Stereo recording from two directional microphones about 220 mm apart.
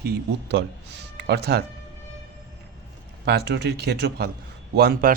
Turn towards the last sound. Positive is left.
turn(degrees=-45)  # may be behind; listen again after turning